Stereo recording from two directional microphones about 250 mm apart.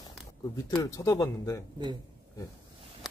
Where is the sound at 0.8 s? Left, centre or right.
Centre.